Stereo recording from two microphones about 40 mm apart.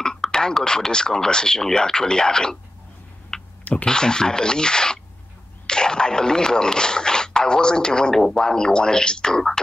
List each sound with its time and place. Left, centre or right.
0.0 s speech: centre
3.3 s a sound: centre
3.8 s speech: centre